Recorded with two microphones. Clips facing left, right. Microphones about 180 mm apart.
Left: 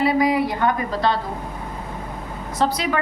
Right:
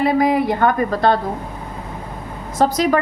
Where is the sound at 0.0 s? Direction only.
50° right (ahead or behind).